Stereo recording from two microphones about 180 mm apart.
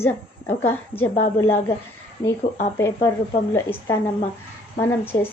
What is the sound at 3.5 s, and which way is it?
A woman's voice, 15° left (ahead or behind).